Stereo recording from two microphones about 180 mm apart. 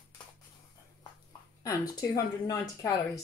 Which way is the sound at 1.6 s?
20° left (ahead or behind).